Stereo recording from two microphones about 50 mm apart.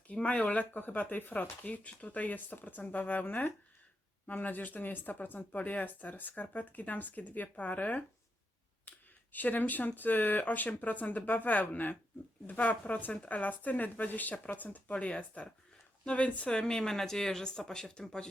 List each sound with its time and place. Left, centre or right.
0.1 s speech: left
9.3 s speech: left; by 18.3 s centre